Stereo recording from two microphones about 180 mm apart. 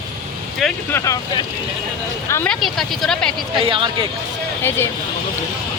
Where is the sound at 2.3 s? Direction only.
10° left (ahead or behind).